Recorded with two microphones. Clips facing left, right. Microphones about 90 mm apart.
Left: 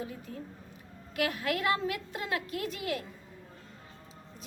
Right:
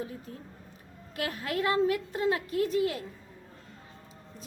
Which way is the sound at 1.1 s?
30° right (ahead or behind).